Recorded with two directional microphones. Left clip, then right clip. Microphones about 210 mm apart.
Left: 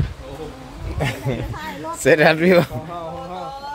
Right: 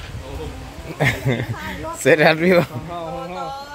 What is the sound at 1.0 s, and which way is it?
Speech, 15° right (ahead or behind).